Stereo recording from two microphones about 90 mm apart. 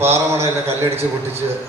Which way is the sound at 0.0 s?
30° right (ahead or behind).